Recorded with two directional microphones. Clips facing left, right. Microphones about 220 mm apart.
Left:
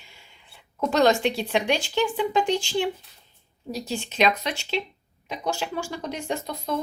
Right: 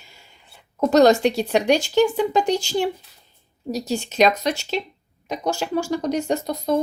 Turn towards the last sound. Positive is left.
turn(degrees=-40)  # may be behind; listen again after turning